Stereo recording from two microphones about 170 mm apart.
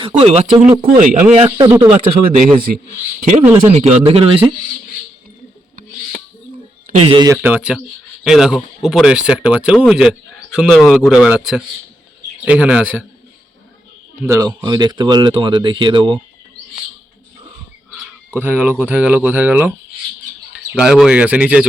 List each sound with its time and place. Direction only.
0.2 s a man's voice: 40° right (ahead or behind)
0.8 s a man's voice: 55° right (ahead or behind)
1.5 s speech: 20° right (ahead or behind)
2.4 s a man's voice: 60° right (ahead or behind)
3.7 s a man's voice: 40° right (ahead or behind)
6.8 s speech: 40° right (ahead or behind)
7.3 s a man's voice: 10° right (ahead or behind)
14.3 s speech: 20° right (ahead or behind)
18.3 s speech: 10° right (ahead or behind)